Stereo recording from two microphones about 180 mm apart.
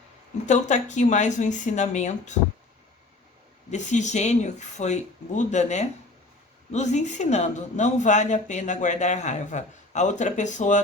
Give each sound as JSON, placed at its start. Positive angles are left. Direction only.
{"t": 0.4, "sound": "speech", "side_deg": 40}
{"t": 3.7, "sound": "speech", "side_deg": 40}